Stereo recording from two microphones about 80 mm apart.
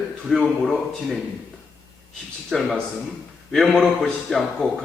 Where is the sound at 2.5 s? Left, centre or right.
Centre.